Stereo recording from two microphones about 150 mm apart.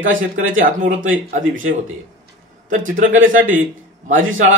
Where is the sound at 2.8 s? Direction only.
60° right (ahead or behind).